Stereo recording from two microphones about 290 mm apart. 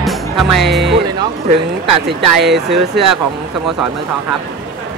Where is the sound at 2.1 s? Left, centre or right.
Right.